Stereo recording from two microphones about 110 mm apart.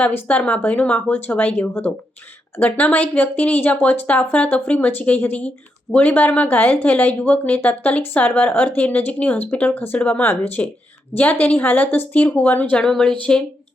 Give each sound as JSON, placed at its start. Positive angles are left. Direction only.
{"t": 0.0, "sound": "speech", "side_deg": 15}